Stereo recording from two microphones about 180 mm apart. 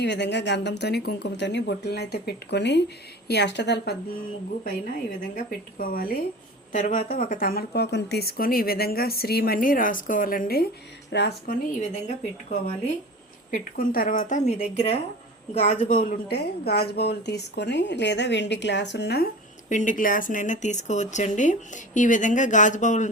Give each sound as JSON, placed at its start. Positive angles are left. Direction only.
{"t": 0.0, "sound": "a woman's voice", "side_deg": 75}
{"t": 5.4, "sound": "speech", "side_deg": 50}
{"t": 11.1, "sound": "a woman's voice", "side_deg": 65}
{"t": 11.8, "sound": "speech", "side_deg": 40}
{"t": 13.5, "sound": "a woman's voice", "side_deg": 55}
{"t": 19.7, "sound": "speech", "side_deg": 45}